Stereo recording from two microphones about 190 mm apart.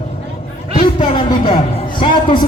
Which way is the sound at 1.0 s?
25° left (ahead or behind).